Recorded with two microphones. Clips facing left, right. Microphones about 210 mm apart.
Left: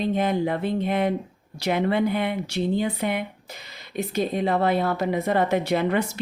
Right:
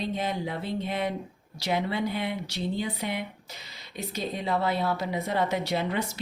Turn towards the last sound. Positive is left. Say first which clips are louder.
# left 6 dB
turn(degrees=55)  # may be behind; listen again after turning